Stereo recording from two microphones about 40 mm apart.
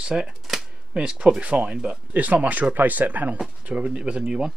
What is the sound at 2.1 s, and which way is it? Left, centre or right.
Speech, right.